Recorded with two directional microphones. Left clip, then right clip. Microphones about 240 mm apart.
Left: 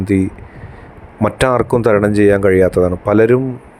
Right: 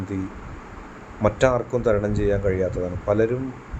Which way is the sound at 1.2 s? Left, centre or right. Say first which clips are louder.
Left 6 dB; left.